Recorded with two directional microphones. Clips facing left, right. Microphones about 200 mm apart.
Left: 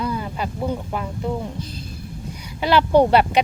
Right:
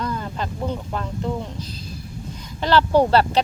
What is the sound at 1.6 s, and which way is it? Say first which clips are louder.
Speech: left 2 dB; 55° left (ahead or behind).